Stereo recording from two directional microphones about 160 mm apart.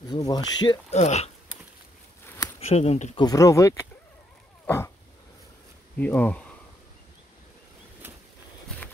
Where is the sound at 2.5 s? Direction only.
40° left (ahead or behind).